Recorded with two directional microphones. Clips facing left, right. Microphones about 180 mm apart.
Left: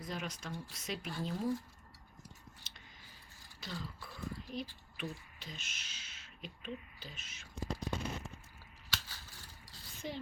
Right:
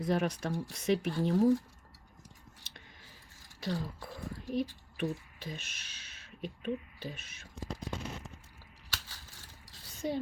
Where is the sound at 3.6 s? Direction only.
60° right (ahead or behind).